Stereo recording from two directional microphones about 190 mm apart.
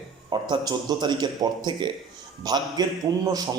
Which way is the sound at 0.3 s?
25° right (ahead or behind).